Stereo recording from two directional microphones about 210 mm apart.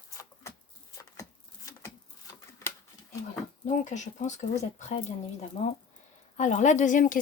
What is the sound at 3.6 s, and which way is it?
A woman's voice, 35° left (ahead or behind).